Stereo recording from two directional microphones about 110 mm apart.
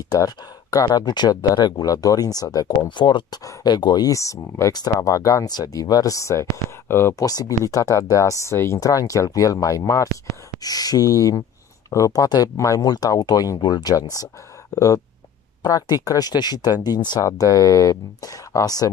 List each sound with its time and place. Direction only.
0.1 s speech: 35° left (ahead or behind)
3.0 s speech: 45° left (ahead or behind)